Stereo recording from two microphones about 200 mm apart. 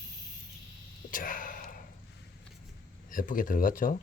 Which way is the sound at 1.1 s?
40° left (ahead or behind).